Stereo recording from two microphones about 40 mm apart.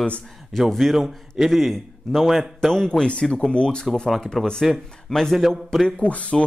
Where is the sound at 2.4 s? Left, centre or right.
Centre.